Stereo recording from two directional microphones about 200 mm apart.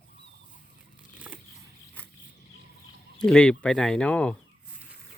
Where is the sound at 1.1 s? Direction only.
10° right (ahead or behind).